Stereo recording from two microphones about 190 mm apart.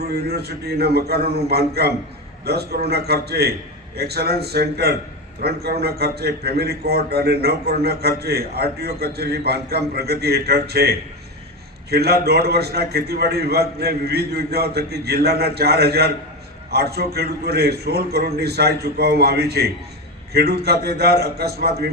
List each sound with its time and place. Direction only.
0.1 s a man's voice: 55° right (ahead or behind)